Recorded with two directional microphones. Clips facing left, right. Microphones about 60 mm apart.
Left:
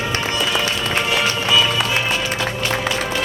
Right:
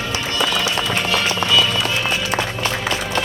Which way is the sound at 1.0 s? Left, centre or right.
Centre.